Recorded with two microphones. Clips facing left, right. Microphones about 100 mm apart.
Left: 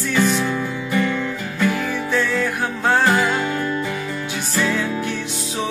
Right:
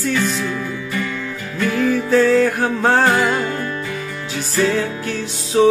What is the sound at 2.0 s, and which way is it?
Music, 35° right (ahead or behind).